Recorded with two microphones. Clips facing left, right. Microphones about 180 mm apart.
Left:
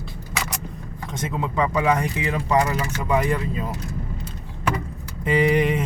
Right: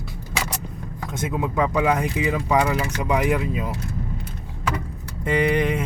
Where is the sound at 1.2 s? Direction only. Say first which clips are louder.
Right 1 dB; 10° right (ahead or behind).